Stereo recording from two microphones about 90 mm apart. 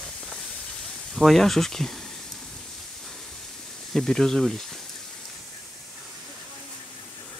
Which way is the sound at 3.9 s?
5° left (ahead or behind).